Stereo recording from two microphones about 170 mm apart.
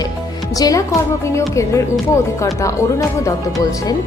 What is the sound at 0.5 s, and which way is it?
A woman's voice, 20° left (ahead or behind).